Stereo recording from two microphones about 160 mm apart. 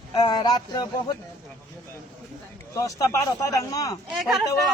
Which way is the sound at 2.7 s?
20° left (ahead or behind).